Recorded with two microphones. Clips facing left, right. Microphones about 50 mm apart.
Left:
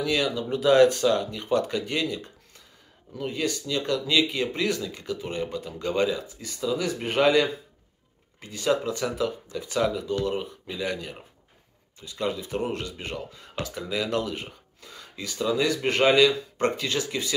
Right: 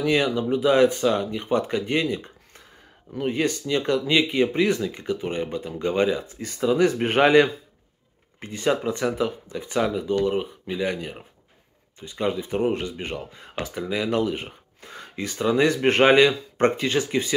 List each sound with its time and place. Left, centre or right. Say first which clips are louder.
0.0 s speech: right 4 dB; right
0.5 s speech: left 1 dB; centre
3.3 s speech: right 5 dB; right
6.2 s speech: right 6 dB; right; by 14.5 s centre
14.8 s speech: right 7 dB; right